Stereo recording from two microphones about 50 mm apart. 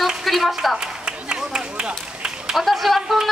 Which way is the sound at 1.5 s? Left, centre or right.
Centre.